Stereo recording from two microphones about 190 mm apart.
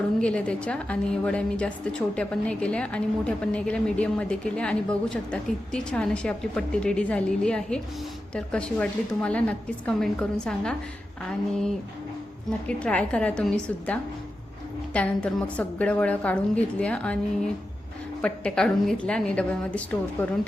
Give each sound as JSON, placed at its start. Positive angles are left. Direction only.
{"t": 0.2, "sound": "a woman's voice", "side_deg": 5}